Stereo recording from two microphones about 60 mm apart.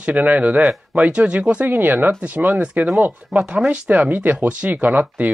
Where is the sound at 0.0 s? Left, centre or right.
Right.